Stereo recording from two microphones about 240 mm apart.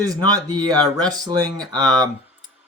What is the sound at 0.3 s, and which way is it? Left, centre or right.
Speech, centre.